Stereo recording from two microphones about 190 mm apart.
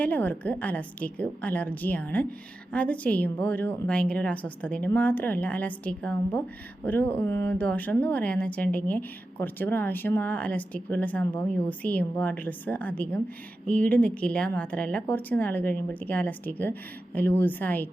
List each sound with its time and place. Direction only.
0.0 s speech: 10° left (ahead or behind)